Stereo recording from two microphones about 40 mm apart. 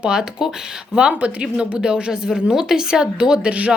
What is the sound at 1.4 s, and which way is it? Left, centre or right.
Speech, right.